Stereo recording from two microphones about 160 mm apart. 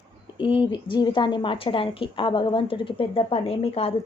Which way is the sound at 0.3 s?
35° left (ahead or behind).